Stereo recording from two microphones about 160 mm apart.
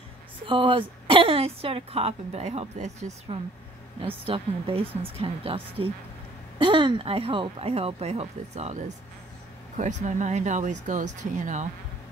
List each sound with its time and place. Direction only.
0.5 s a woman's voice: 30° right (ahead or behind)
4.3 s a woman's voice: 35° right (ahead or behind)